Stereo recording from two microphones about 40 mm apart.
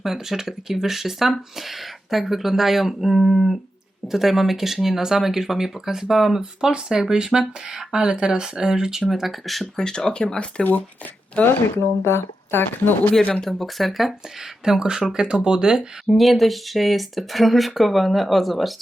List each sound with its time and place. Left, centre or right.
0.0 s speech: centre
6.4 s speech: centre
9.0 s speech: centre
9.7 s speech: centre
12.0 s speech: left
13.4 s speech: centre
14.6 s speech: centre
16.0 s speech: centre